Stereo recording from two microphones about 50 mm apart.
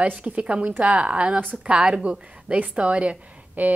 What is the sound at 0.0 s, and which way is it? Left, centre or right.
A woman's voice, right.